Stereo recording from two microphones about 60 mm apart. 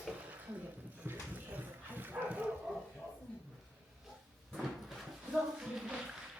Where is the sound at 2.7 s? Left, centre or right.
Centre.